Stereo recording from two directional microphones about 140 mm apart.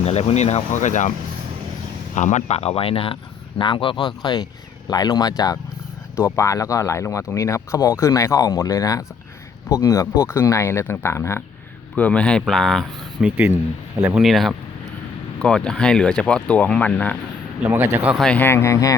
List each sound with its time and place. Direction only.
0.0 s speech: 50° left (ahead or behind)
2.1 s speech: 60° left (ahead or behind); by 12.9 s centre (ahead or behind)
13.2 s speech: 15° right (ahead or behind)
14.2 s speech: centre (ahead or behind)
17.6 s speech: 15° right (ahead or behind)
18.2 s speech: 10° left (ahead or behind)